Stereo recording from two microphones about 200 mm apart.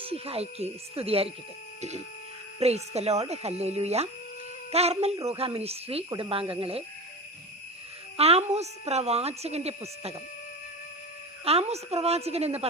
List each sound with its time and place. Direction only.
0.0 s speech: 30° right (ahead or behind)
2.6 s a woman's voice: 30° right (ahead or behind)
8.1 s a woman's voice: 30° right (ahead or behind)
11.4 s a woman's voice: 30° right (ahead or behind)